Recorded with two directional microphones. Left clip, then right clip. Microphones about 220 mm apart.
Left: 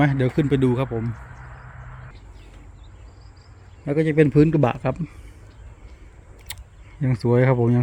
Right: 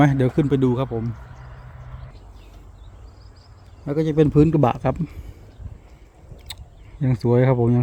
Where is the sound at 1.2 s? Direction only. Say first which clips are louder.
Left 2 dB; 55° right (ahead or behind).